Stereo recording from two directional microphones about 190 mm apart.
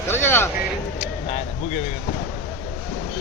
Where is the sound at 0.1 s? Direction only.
10° left (ahead or behind).